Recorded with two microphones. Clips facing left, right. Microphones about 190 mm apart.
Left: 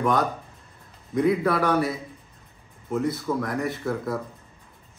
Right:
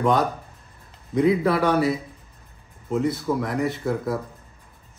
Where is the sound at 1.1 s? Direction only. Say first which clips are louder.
Right 2 dB; 25° right (ahead or behind).